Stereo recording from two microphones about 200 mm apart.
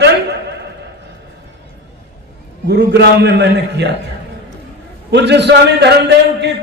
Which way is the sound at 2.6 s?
55° right (ahead or behind).